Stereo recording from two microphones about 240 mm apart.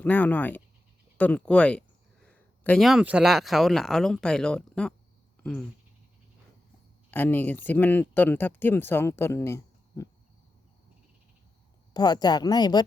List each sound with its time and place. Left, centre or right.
0.0 s speech: centre
5.4 s a sound: centre
7.1 s speech: centre
11.9 s speech: centre